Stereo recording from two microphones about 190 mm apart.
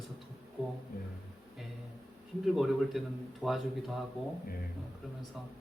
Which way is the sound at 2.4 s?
Centre (ahead or behind).